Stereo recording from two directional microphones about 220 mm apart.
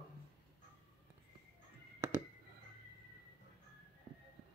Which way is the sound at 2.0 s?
10° right (ahead or behind).